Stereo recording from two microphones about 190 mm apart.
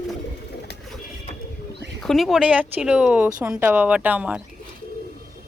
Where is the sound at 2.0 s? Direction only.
Centre (ahead or behind).